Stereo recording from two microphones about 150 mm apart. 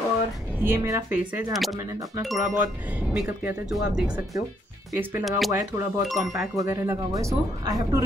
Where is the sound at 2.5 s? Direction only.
10° right (ahead or behind).